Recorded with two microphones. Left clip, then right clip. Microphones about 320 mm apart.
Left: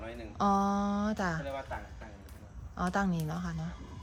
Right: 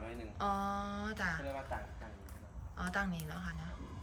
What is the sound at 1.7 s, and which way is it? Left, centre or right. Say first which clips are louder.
Speech: left 2 dB; centre.